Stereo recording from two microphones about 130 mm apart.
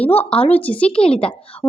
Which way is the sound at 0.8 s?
45° left (ahead or behind).